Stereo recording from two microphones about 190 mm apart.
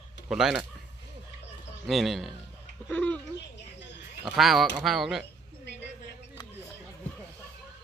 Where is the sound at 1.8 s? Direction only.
Centre (ahead or behind).